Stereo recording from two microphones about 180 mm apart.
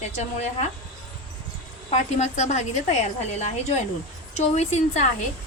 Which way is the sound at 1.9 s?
35° left (ahead or behind).